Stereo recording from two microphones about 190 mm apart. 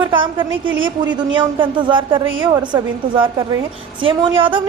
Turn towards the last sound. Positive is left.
turn(degrees=-25)  # may be behind; listen again after turning